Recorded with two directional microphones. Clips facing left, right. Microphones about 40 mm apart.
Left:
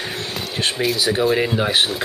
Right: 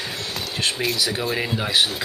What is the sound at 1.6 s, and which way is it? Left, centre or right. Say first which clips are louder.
Speech: left 2 dB; left.